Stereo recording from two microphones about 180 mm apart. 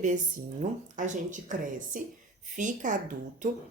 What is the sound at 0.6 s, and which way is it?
Speech, 45° right (ahead or behind).